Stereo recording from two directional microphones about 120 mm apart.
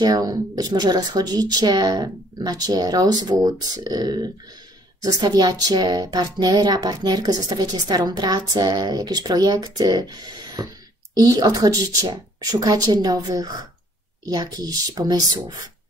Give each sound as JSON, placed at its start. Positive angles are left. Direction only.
{"t": 0.0, "sound": "speech", "side_deg": -30}